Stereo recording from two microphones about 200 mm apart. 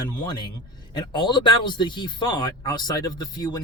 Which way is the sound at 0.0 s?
20° left (ahead or behind).